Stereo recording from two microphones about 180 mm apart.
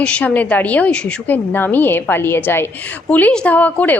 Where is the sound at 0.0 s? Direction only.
5° left (ahead or behind).